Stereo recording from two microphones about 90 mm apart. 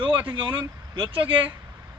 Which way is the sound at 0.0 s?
65° right (ahead or behind).